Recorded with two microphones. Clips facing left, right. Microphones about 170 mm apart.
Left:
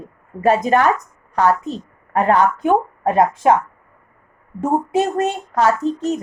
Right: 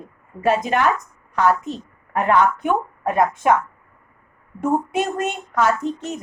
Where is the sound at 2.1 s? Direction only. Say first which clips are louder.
Left 2 dB; 35° left (ahead or behind).